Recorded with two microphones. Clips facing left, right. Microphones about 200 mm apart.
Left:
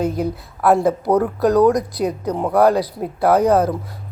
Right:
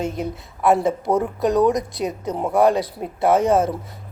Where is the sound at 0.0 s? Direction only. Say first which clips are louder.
Left 5 dB; centre (ahead or behind).